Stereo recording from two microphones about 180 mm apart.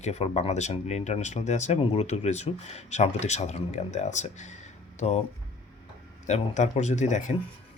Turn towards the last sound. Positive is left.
turn(degrees=40)  # may be behind; listen again after turning